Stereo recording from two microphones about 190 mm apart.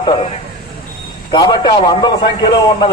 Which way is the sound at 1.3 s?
25° left (ahead or behind).